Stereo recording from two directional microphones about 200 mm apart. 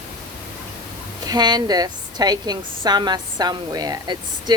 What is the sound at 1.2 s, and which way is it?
A woman's voice, 20° right (ahead or behind).